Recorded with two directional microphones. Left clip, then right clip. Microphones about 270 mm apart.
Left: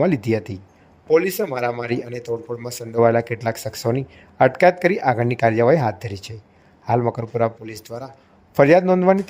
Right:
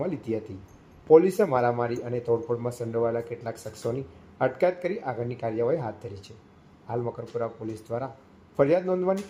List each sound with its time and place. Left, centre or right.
0.0 s a man's voice: left
2.0 s a man's voice: centre
3.0 s speech: left
7.9 s a man's voice: centre
8.5 s speech: left